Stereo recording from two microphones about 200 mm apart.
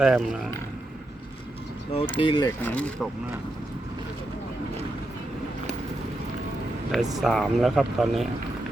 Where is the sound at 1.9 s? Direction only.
25° left (ahead or behind).